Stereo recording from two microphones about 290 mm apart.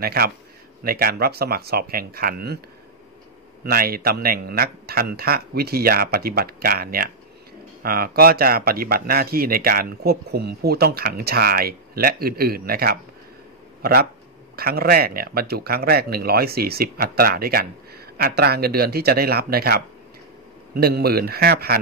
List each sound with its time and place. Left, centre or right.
0.0 s speech: right
3.6 s speech: right
14.5 s speech: right